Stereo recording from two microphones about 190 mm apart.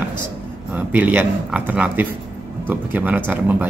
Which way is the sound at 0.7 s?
10° right (ahead or behind).